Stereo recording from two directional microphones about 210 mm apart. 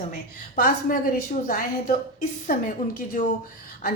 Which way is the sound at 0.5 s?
40° left (ahead or behind).